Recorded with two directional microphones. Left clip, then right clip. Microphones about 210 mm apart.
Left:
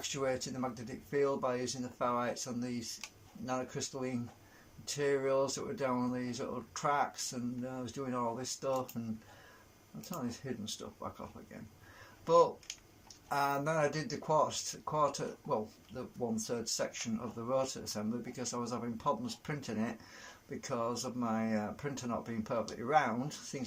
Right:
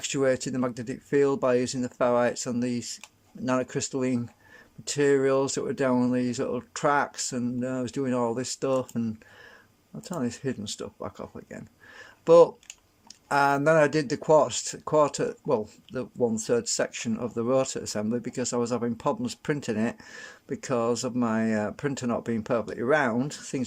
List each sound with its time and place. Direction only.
0.0 s speech: 45° right (ahead or behind)
10.1 s speech: 45° right (ahead or behind)